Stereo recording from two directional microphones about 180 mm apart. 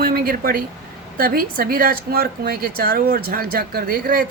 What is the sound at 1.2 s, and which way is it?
Speech, 55° right (ahead or behind).